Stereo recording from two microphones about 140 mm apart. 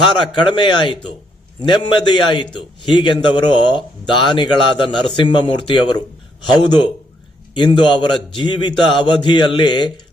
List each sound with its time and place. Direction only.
0.3 s a man's voice: 35° left (ahead or behind)